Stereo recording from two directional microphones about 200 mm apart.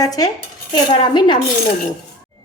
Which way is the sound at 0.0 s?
20° left (ahead or behind).